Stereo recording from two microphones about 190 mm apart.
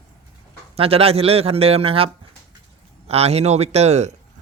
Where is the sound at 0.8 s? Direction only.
30° right (ahead or behind).